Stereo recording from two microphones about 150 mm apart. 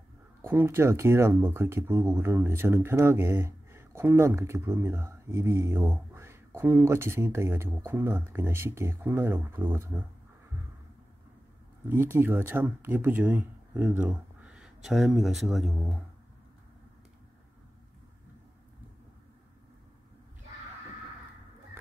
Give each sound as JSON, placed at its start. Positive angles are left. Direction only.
{"t": 0.4, "sound": "speech", "side_deg": -15}
{"t": 11.9, "sound": "speech", "side_deg": -15}